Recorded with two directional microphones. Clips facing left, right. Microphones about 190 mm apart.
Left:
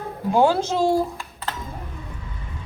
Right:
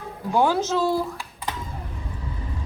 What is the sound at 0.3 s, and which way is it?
Speech, 15° left (ahead or behind).